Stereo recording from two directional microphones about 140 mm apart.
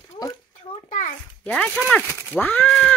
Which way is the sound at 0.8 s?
65° left (ahead or behind).